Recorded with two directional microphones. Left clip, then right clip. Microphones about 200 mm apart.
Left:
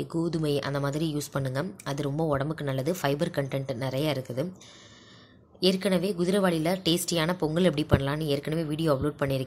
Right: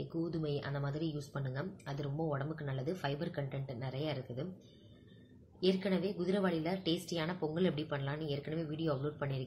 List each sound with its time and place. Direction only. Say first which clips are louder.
0.2 s a woman's voice: left 10 dB; 45° left (ahead or behind)
5.6 s a woman's voice: left 8 dB; 45° left (ahead or behind)